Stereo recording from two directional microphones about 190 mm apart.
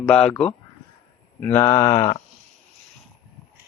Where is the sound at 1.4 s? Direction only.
10° left (ahead or behind).